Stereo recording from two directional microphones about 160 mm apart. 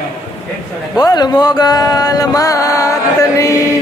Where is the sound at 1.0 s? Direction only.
25° left (ahead or behind).